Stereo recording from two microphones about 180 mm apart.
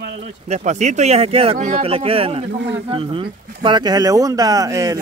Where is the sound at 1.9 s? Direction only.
30° right (ahead or behind).